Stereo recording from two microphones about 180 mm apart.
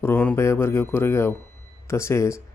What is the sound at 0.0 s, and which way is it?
Speech, 10° left (ahead or behind).